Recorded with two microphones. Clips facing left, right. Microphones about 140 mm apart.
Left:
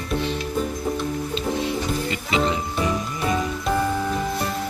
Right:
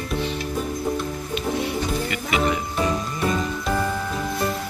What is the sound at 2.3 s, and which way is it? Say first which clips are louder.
Music: even; 25° left (ahead or behind).